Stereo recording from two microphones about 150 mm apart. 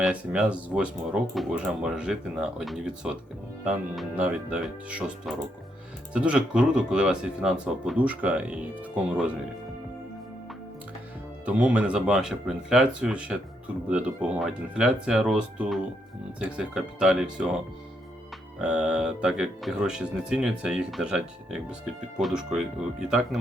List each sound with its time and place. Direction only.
0.0 s speech: 5° right (ahead or behind)
11.4 s speech: 10° right (ahead or behind)
18.6 s speech: 5° right (ahead or behind)